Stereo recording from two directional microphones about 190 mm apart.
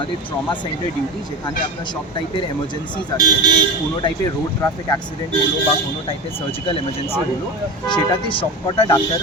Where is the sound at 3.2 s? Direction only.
20° right (ahead or behind).